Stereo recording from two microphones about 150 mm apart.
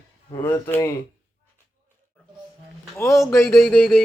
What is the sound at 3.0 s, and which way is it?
Speech, 20° left (ahead or behind).